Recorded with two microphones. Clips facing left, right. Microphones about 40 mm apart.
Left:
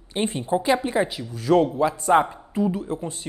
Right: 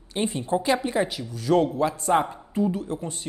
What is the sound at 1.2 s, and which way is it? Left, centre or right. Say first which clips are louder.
Speech: left 3 dB; left.